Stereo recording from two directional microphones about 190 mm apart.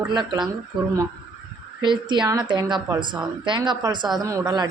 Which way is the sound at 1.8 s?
25° right (ahead or behind).